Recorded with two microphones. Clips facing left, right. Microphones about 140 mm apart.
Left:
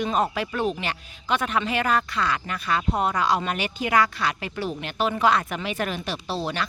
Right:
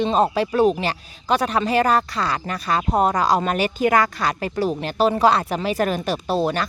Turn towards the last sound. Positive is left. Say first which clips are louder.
# right 7 dB
turn(degrees=-45)  # may be behind; listen again after turning